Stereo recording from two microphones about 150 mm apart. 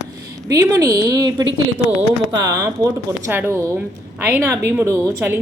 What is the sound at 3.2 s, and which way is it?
A woman's voice, 15° right (ahead or behind).